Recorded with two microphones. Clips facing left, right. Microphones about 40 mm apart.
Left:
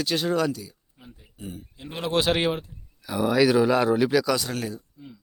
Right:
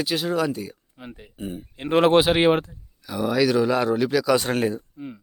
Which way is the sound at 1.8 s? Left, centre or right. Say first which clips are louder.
Right 14 dB; right.